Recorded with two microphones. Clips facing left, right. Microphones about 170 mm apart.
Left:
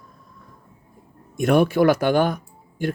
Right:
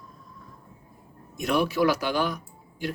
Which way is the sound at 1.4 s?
55° left (ahead or behind).